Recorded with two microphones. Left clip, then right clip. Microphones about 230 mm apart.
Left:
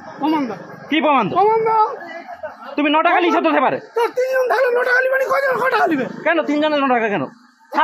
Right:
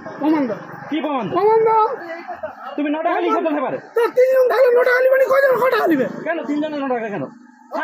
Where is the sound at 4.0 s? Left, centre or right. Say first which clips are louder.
Right 5 dB; centre.